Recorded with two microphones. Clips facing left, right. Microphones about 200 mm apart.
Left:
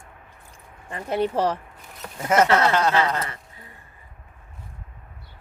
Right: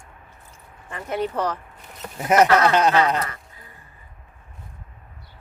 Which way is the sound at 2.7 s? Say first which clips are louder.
Right 3 dB; 20° right (ahead or behind).